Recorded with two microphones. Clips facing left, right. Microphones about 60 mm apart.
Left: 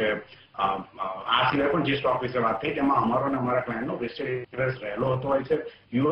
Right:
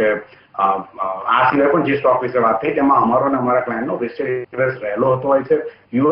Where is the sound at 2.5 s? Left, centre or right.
Right.